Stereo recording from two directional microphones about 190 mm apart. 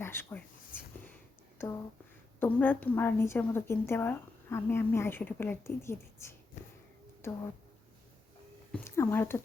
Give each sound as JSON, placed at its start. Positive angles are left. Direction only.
{"t": 0.0, "sound": "speech", "side_deg": 10}
{"t": 1.5, "sound": "a woman's voice", "side_deg": 15}
{"t": 6.6, "sound": "a sound", "side_deg": 40}
{"t": 7.2, "sound": "speech", "side_deg": 15}
{"t": 8.7, "sound": "a woman's voice", "side_deg": 10}